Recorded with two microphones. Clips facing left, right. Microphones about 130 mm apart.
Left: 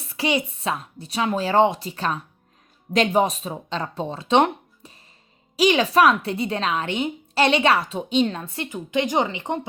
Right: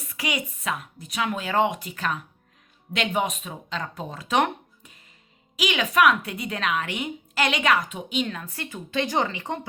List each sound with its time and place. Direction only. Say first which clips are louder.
0.1 s a woman's voice: left 7 dB; 30° left (ahead or behind)